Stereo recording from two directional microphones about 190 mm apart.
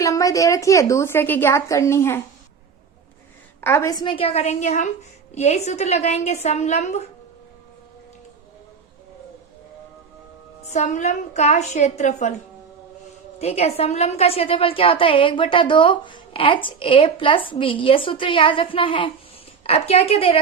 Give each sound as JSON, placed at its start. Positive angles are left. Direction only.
{"t": 0.0, "sound": "a woman's voice", "side_deg": 20}
{"t": 3.6, "sound": "a woman's voice", "side_deg": 15}
{"t": 10.7, "sound": "a woman's voice", "side_deg": 40}
{"t": 13.4, "sound": "a woman's voice", "side_deg": 35}